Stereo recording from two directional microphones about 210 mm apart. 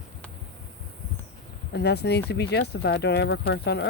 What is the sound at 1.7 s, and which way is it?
Speech, 50° left (ahead or behind).